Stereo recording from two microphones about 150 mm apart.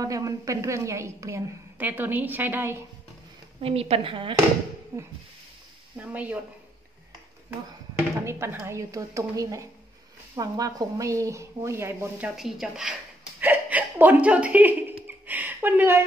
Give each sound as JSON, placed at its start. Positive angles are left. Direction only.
{"t": 0.0, "sound": "a woman's voice", "side_deg": -25}
{"t": 3.6, "sound": "a woman's voice", "side_deg": -40}
{"t": 4.9, "sound": "a woman's voice", "side_deg": -20}
{"t": 6.1, "sound": "speech", "side_deg": -10}
{"t": 8.2, "sound": "a woman's voice", "side_deg": -15}
{"t": 12.4, "sound": "speech", "side_deg": -5}
{"t": 13.4, "sound": "hiccup", "side_deg": -10}
{"t": 15.0, "sound": "a sound", "side_deg": -10}